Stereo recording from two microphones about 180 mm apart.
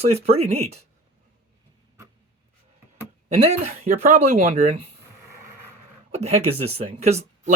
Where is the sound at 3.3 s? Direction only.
35° right (ahead or behind).